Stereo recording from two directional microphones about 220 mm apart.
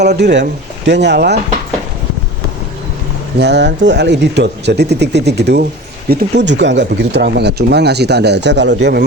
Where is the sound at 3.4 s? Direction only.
50° right (ahead or behind).